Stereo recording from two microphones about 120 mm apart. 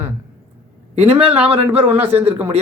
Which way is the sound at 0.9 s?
60° right (ahead or behind).